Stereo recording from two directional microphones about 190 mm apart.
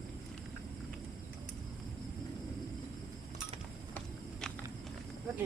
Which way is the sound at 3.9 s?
5° left (ahead or behind).